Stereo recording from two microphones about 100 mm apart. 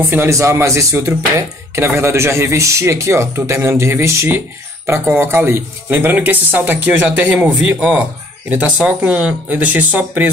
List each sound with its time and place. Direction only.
0.1 s a man's voice: 25° right (ahead or behind)